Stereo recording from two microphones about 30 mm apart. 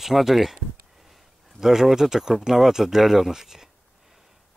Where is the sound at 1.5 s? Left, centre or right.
Centre.